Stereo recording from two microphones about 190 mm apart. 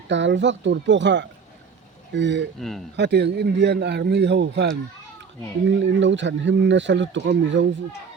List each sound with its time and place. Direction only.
0.1 s speech: 70° right (ahead or behind)
2.6 s speech: centre (ahead or behind)
2.9 s speech: 65° right (ahead or behind)